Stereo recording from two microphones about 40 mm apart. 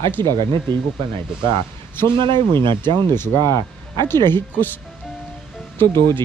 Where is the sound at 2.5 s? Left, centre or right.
Left.